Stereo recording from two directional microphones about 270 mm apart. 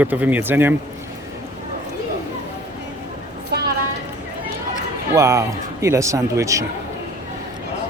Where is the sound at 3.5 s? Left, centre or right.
Right.